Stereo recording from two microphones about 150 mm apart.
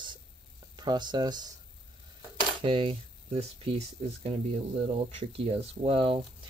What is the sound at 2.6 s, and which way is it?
Stir, 35° right (ahead or behind).